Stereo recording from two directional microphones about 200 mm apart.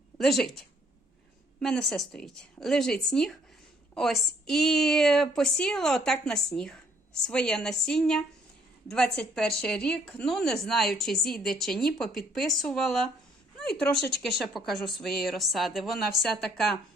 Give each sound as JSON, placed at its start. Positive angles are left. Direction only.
{"t": 0.2, "sound": "a woman's voice", "side_deg": 0}
{"t": 1.6, "sound": "a woman's voice", "side_deg": 0}